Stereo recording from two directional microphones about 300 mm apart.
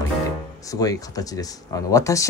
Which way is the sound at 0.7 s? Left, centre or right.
Centre.